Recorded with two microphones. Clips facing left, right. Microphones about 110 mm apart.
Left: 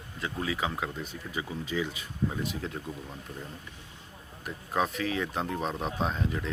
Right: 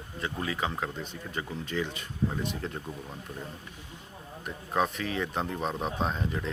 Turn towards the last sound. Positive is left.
turn(degrees=0)  # may be behind; listen again after turning